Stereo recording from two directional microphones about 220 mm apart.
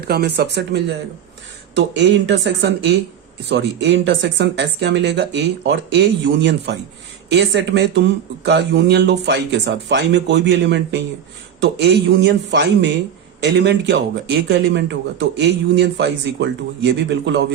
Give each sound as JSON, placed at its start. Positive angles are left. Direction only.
{"t": 0.0, "sound": "speech", "side_deg": -45}